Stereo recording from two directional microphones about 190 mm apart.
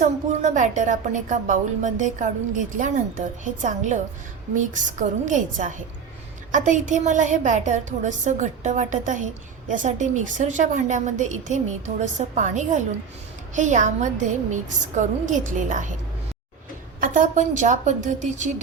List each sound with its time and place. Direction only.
0.0 s a woman's voice: 40° right (ahead or behind)
17.0 s a woman's voice: 45° right (ahead or behind)